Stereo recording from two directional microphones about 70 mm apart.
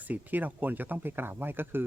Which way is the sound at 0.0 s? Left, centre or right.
Right.